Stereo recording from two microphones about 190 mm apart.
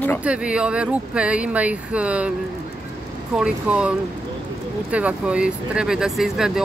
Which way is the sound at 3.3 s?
5° right (ahead or behind).